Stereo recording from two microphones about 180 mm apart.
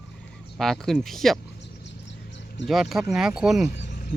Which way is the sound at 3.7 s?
65° left (ahead or behind).